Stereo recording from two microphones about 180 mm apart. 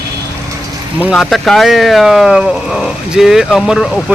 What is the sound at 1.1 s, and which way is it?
Speech, centre (ahead or behind).